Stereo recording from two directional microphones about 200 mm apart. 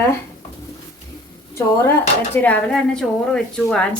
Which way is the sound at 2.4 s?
5° left (ahead or behind).